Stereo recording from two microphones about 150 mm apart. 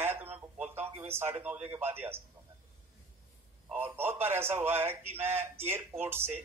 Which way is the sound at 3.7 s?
15° right (ahead or behind).